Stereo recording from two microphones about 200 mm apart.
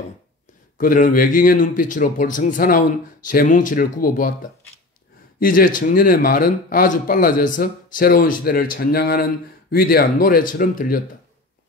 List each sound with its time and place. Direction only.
0.7 s speech: 45° left (ahead or behind)